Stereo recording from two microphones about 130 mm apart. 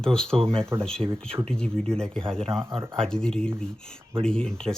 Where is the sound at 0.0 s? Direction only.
5° left (ahead or behind).